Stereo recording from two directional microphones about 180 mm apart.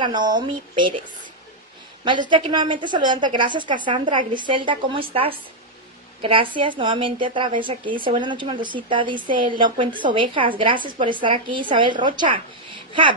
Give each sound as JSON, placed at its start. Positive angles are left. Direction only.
{"t": 0.0, "sound": "a woman's voice", "side_deg": -25}
{"t": 2.0, "sound": "a woman's voice", "side_deg": -25}